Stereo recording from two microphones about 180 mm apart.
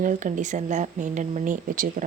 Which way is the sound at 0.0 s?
45° right (ahead or behind).